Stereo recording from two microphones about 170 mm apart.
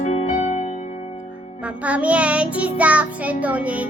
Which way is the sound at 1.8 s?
10° right (ahead or behind).